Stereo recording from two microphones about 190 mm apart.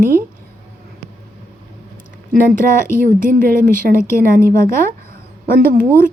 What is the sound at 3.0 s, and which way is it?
Speech, 45° right (ahead or behind).